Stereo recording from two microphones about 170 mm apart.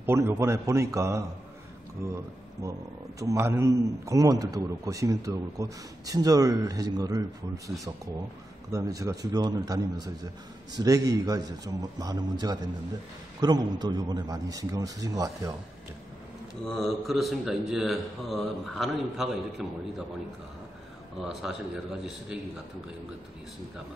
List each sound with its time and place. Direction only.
0.0 s a man's voice: 15° right (ahead or behind)
16.6 s a man's voice: centre (ahead or behind)
21.2 s a man's voice: centre (ahead or behind)